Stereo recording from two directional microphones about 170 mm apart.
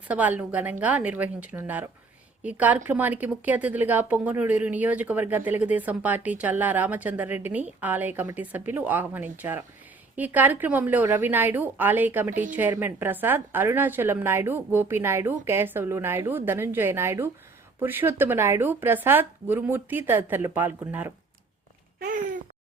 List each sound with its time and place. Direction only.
0.1 s a woman's voice: 10° right (ahead or behind)